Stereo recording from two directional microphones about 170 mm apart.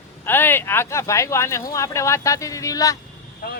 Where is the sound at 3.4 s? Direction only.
60° left (ahead or behind).